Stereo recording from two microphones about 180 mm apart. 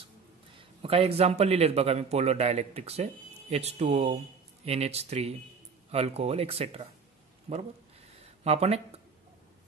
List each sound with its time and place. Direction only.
0.6 s a man's voice: 35° right (ahead or behind)